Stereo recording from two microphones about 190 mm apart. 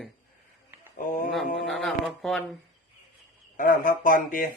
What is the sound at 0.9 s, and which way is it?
Speech, 50° left (ahead or behind).